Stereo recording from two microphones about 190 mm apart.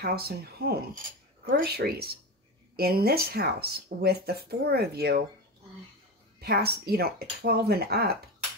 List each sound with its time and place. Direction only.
0.0 s speech: 55° right (ahead or behind)
6.4 s speech: 55° right (ahead or behind)